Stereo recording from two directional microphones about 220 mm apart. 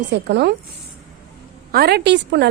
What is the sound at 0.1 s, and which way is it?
Speech, 50° right (ahead or behind).